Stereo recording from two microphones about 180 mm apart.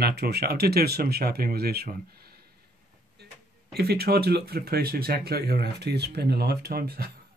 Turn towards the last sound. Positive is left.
turn(degrees=-60)  # may be behind; listen again after turning